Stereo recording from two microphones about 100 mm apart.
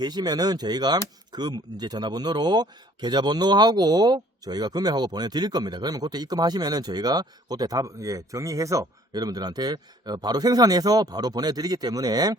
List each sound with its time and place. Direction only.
0.0 s speech: 45° right (ahead or behind)